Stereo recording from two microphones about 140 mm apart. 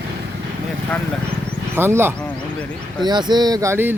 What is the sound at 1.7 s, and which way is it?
Speech, 15° right (ahead or behind).